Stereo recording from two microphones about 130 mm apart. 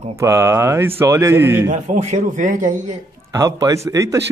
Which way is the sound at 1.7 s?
70° right (ahead or behind).